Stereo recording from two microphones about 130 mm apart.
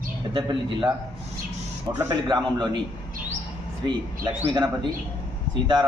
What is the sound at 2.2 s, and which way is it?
Speech, 35° right (ahead or behind).